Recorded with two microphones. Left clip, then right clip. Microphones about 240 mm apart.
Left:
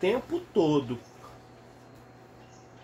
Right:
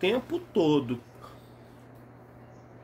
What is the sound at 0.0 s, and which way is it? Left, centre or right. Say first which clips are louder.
Speech: even; centre.